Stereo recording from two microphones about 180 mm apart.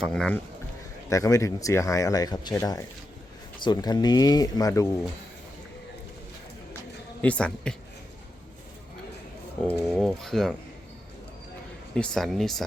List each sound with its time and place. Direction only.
0.0 s speech: 5° left (ahead or behind)
1.1 s speech: 20° left (ahead or behind)
7.2 s speech: 5° left (ahead or behind)
9.6 s speech: 5° left (ahead or behind)
11.9 s speech: 5° left (ahead or behind)